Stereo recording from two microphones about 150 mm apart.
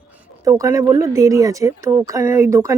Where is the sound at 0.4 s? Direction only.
20° right (ahead or behind).